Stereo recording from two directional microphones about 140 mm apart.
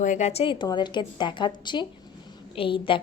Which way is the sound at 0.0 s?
60° left (ahead or behind).